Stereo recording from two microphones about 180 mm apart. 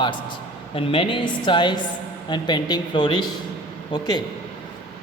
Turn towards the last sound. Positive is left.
turn(degrees=25)  # may be behind; listen again after turning